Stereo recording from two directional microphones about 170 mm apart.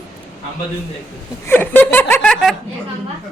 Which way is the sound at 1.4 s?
10° left (ahead or behind).